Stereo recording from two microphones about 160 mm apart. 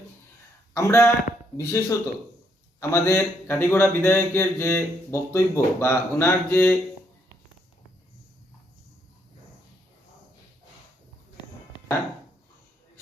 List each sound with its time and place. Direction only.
0.7 s speech: 15° left (ahead or behind)